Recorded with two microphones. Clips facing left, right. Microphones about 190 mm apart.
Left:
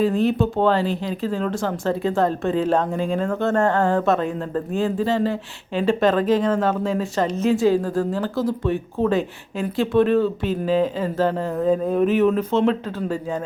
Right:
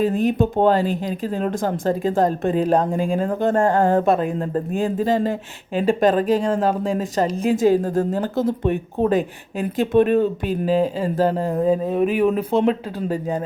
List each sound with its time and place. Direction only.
0.0 s speech: 15° right (ahead or behind)
0.6 s speech: 45° right (ahead or behind)
2.4 s speech: 15° right (ahead or behind)
6.1 s speech: 40° right (ahead or behind)
7.3 s speech: 15° right (ahead or behind)
7.9 s speech: 45° right (ahead or behind)
8.4 s speech: 20° right (ahead or behind)
10.7 s speech: 40° right (ahead or behind)
11.6 s speech: 5° right (ahead or behind)